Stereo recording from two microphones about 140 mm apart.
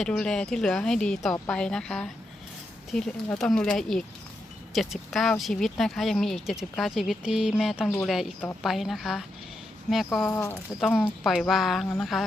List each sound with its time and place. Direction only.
0.0 s speech: 5° left (ahead or behind)
10.3 s speech: 25° left (ahead or behind)
10.8 s speech: 5° right (ahead or behind)